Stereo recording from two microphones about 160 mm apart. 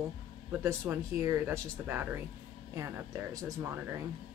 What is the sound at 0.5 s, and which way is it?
A woman's voice, 15° right (ahead or behind).